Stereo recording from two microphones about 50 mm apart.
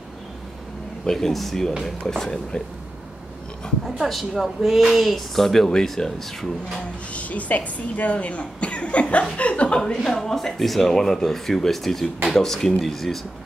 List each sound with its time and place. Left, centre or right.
1.0 s speech: centre
3.8 s speech: centre
7.1 s speech: left
10.0 s speech: centre